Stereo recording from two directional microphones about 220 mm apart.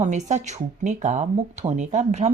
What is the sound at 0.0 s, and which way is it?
Speech, 35° right (ahead or behind).